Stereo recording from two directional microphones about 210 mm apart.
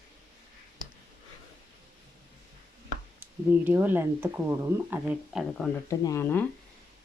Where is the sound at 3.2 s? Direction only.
10° right (ahead or behind).